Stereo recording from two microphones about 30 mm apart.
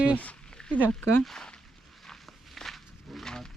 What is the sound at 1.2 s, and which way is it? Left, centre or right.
Speech, centre.